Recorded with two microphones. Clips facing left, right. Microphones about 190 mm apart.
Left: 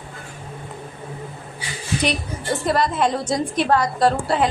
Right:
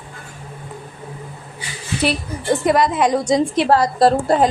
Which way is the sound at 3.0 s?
15° right (ahead or behind).